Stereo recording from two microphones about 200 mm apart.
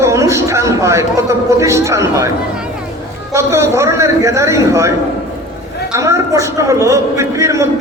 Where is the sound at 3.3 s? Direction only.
15° right (ahead or behind).